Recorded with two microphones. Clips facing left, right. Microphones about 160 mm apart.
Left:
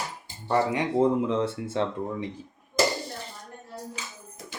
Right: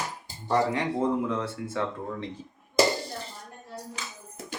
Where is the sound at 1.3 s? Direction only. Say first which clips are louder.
Left 4 dB; 25° left (ahead or behind).